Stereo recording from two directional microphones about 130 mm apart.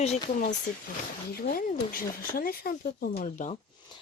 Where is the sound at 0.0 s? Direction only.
75° left (ahead or behind).